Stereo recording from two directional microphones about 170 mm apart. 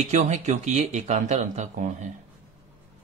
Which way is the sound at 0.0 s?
45° right (ahead or behind).